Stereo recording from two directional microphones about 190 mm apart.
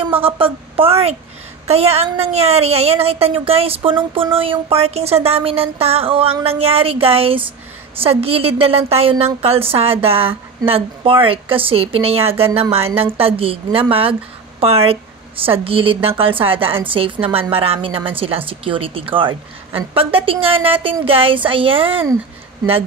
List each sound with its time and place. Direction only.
0.2 s a woman's voice: 30° right (ahead or behind)